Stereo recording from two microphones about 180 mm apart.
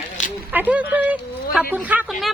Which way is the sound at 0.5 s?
10° right (ahead or behind).